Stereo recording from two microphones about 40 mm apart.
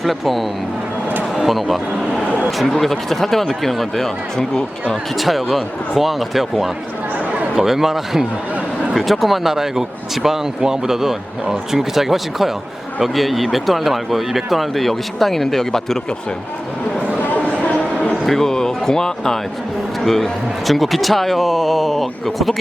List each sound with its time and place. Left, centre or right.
0.0 s speech: centre
5.1 s speech: centre
17.2 s chatter: left
18.3 s speech: centre